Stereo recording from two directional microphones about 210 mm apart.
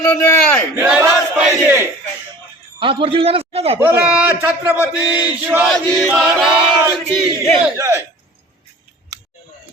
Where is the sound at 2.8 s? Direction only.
25° right (ahead or behind).